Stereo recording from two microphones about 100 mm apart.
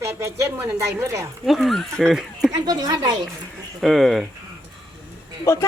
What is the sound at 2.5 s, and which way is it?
Speech, 40° right (ahead or behind).